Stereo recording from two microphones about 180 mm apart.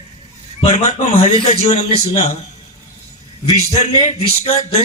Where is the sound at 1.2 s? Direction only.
40° left (ahead or behind).